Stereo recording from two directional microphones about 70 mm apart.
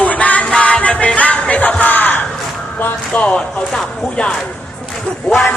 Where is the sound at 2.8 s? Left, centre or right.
Centre.